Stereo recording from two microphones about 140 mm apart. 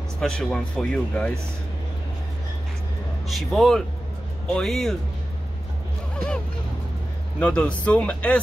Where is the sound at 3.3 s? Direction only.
Centre (ahead or behind).